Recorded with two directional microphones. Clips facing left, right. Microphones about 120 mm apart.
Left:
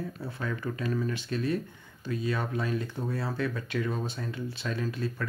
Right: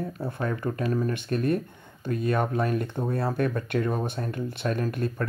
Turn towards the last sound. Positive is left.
turn(degrees=-55)  # may be behind; listen again after turning